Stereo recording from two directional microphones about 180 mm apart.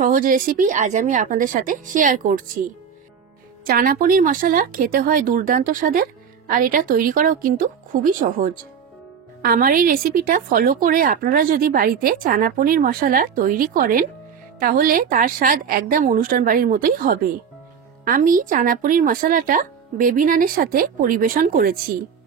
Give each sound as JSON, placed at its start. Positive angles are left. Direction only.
{"t": 0.0, "sound": "a woman's voice", "side_deg": -50}
{"t": 3.6, "sound": "a woman's voice", "side_deg": -55}